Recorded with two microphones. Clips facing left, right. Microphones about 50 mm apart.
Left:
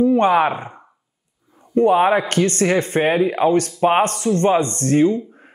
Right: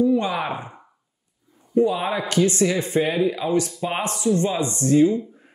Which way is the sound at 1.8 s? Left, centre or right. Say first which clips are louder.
Left 6 dB; left.